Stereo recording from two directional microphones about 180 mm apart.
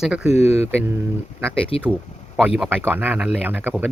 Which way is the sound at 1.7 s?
30° left (ahead or behind).